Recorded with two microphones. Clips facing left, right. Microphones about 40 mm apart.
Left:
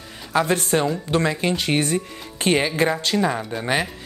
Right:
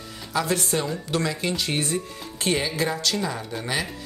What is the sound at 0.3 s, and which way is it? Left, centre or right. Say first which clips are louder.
Speech: left 5 dB; left.